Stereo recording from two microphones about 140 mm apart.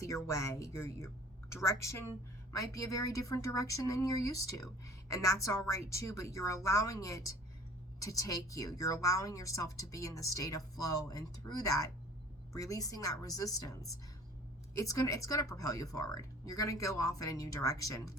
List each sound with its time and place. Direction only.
0.3 s speech: 20° left (ahead or behind)
14.8 s speech: 20° left (ahead or behind)